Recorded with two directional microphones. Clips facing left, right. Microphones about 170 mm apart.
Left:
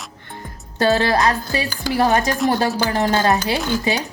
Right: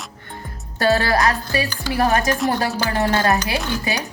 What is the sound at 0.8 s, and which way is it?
A woman's voice, 20° left (ahead or behind).